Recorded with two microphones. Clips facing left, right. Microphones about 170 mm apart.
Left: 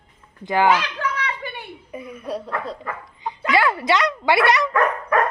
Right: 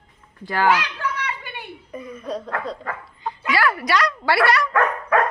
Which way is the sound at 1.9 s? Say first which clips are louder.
Even; 10° left (ahead or behind).